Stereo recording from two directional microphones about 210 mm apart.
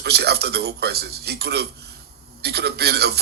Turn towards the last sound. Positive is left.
turn(degrees=-50)  # may be behind; listen again after turning